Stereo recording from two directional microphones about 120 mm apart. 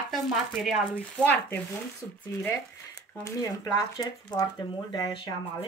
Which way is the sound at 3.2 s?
30° left (ahead or behind).